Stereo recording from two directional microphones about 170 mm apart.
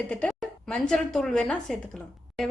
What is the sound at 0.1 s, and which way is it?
A woman's voice, 5° left (ahead or behind).